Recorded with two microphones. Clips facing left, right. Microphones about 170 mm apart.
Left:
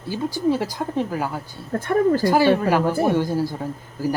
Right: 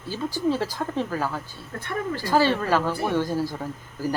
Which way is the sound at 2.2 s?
15° left (ahead or behind).